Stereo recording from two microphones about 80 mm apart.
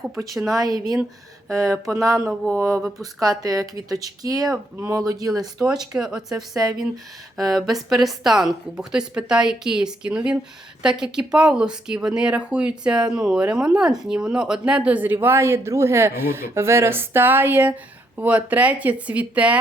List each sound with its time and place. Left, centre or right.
0.5 s speech: right
1.5 s speech: right
2.6 s a sound: right
3.2 s speech: right
5.3 s speech: centre